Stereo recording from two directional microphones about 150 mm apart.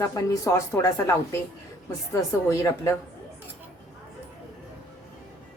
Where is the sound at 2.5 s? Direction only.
20° left (ahead or behind).